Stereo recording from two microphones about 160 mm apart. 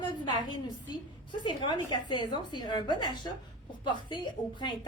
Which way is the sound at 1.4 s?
30° left (ahead or behind).